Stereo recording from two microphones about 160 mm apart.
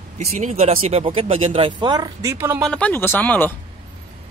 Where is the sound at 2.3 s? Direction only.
15° right (ahead or behind).